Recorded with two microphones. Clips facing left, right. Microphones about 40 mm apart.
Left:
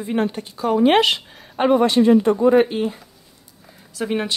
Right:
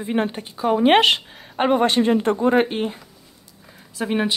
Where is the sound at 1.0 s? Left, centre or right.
Right.